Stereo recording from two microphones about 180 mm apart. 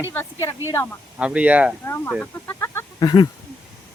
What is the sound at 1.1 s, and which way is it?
Speech, 5° right (ahead or behind).